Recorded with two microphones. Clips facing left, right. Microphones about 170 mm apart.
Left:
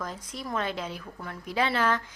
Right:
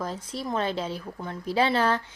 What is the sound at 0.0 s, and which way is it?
A woman's voice, 30° right (ahead or behind).